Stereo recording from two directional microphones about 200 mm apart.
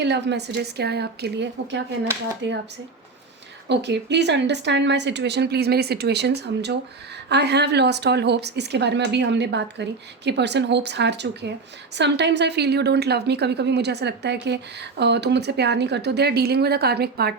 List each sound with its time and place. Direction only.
0.0 s speech: 60° right (ahead or behind)
3.7 s speech: 60° right (ahead or behind)